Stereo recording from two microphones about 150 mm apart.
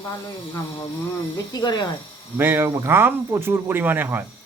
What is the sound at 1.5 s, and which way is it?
Speech, 30° left (ahead or behind).